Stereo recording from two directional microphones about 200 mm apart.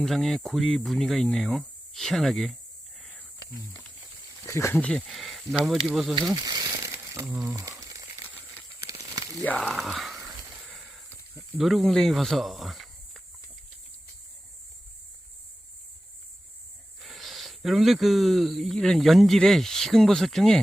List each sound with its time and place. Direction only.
0.0 s speech: centre (ahead or behind)
4.4 s speech: 15° left (ahead or behind)
6.3 s crumpling: 20° right (ahead or behind)
8.8 s snake: 15° right (ahead or behind)
9.4 s a sound: 5° left (ahead or behind)
17.0 s speech: centre (ahead or behind)